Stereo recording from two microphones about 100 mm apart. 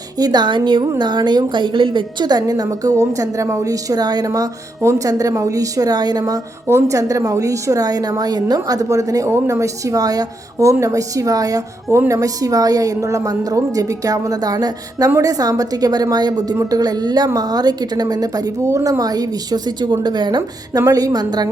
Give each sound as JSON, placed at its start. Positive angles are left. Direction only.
{"t": 0.2, "sound": "a woman's voice", "side_deg": -45}
{"t": 6.7, "sound": "a woman's voice", "side_deg": -30}